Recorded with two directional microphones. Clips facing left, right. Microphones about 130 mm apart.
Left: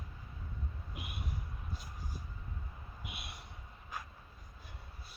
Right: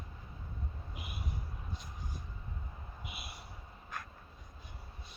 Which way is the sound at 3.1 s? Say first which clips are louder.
Even; centre (ahead or behind).